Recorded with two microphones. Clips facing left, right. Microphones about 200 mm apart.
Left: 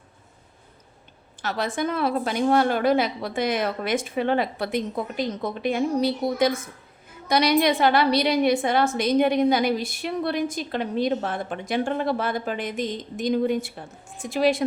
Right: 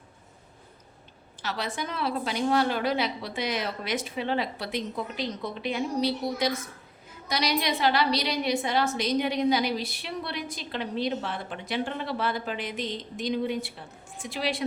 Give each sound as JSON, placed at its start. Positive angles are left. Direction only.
{"t": 1.4, "sound": "a woman's voice", "side_deg": 50}